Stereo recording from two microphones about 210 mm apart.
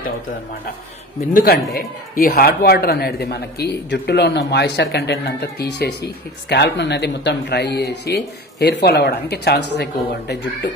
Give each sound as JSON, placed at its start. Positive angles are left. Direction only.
{"t": 1.3, "sound": "speech", "side_deg": 45}